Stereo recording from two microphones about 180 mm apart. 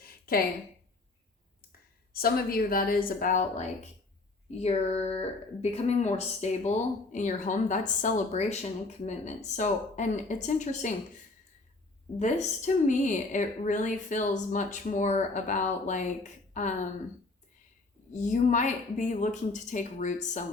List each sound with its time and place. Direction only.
0.0 s a sound: 55° left (ahead or behind)
2.1 s a woman's voice: 55° left (ahead or behind)
12.2 s a woman's voice: 40° left (ahead or behind)
18.1 s a woman's voice: 40° left (ahead or behind)